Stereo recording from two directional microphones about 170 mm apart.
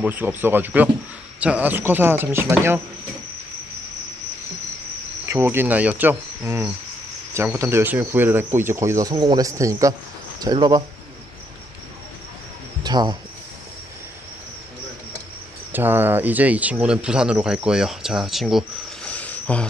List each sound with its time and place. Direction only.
0.0 s speech: 10° right (ahead or behind)
5.2 s speech: 15° right (ahead or behind)
12.8 s speech: 25° right (ahead or behind)
15.7 s speech: 10° right (ahead or behind)
19.1 s cricket: 10° left (ahead or behind)